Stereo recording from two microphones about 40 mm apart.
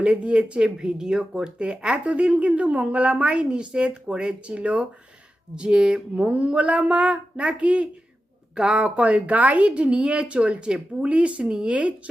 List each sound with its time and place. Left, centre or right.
0.0 s speech: right